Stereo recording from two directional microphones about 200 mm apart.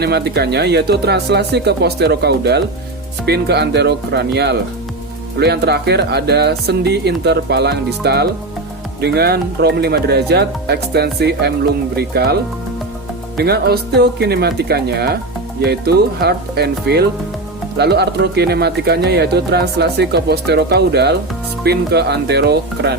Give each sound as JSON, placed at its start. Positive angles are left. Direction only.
{"t": 0.0, "sound": "speech", "side_deg": -55}